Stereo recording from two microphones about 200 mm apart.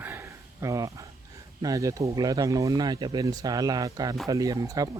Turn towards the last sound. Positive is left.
turn(degrees=-15)  # may be behind; listen again after turning